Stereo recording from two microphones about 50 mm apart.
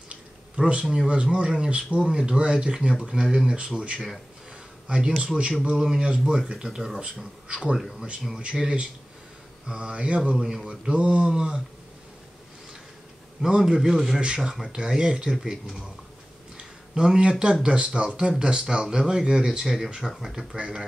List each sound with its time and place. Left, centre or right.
0.6 s speech: right
5.1 s speech: centre
7.4 s speech: right
10.4 s speech: centre
10.7 s speech: centre
13.4 s speech: centre
14.2 s speech: centre
14.5 s speech: centre